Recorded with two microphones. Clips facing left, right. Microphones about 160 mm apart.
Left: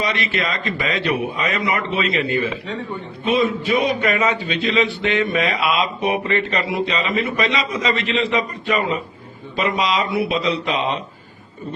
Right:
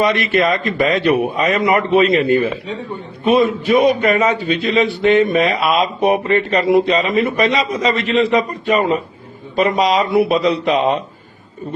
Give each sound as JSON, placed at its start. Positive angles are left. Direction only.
{"t": 0.0, "sound": "a man's voice", "side_deg": -50}